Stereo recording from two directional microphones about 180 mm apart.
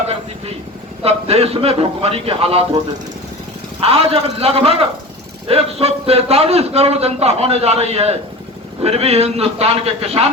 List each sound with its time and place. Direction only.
1.0 s a man's voice: 35° right (ahead or behind)
3.8 s a man's voice: 35° right (ahead or behind)